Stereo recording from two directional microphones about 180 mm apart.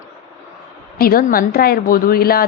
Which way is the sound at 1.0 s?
55° left (ahead or behind).